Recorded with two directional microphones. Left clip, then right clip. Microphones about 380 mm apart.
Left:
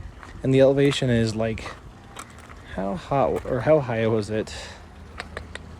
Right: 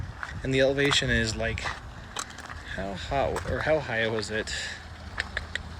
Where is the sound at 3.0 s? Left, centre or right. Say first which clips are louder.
Left 5 dB; centre.